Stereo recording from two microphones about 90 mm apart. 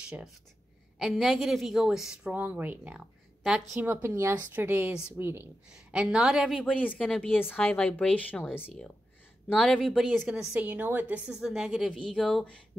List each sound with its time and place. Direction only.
0.9 s a woman's voice: centre (ahead or behind)
2.3 s a woman's voice: 15° right (ahead or behind)
3.8 s speech: 25° right (ahead or behind)
5.7 s a woman's voice: 10° right (ahead or behind)
6.6 s speech: 15° left (ahead or behind)
9.7 s a woman's voice: 5° left (ahead or behind)
10.0 s a woman's voice: 5° right (ahead or behind)
10.6 s speech: 20° right (ahead or behind)
11.3 s a woman's voice: 5° right (ahead or behind)
12.1 s speech: 10° left (ahead or behind)